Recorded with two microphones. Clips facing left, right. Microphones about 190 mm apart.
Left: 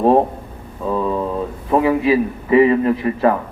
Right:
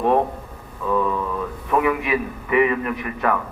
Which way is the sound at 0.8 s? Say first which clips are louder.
Left 2 dB; 30° left (ahead or behind).